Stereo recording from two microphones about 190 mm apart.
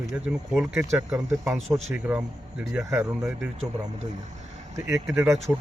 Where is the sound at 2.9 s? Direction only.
15° right (ahead or behind).